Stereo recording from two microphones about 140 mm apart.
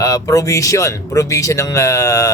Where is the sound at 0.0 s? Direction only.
25° left (ahead or behind).